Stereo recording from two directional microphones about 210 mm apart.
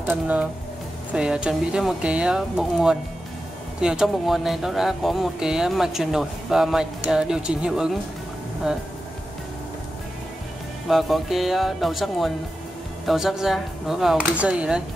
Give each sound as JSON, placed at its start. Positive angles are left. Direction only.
{"t": 1.1, "sound": "speech", "side_deg": -5}
{"t": 10.9, "sound": "speech", "side_deg": 0}